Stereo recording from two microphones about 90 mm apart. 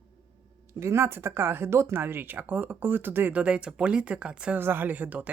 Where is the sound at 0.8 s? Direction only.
30° right (ahead or behind); by 4.6 s 10° right (ahead or behind).